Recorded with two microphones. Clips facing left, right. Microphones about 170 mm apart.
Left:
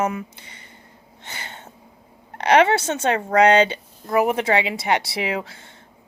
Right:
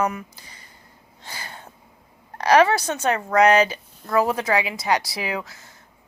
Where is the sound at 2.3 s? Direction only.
25° left (ahead or behind).